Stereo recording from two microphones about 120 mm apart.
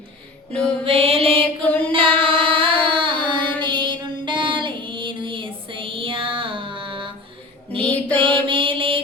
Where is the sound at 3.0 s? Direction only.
45° right (ahead or behind).